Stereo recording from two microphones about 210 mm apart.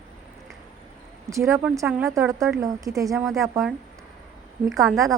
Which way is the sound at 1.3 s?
15° right (ahead or behind).